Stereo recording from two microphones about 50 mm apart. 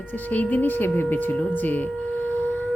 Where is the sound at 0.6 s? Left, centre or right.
Left.